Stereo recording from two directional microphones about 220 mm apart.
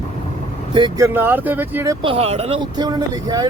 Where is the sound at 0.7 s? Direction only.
20° right (ahead or behind).